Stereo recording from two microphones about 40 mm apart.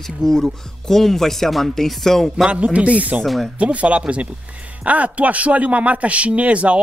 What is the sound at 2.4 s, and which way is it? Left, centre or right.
Speech, right.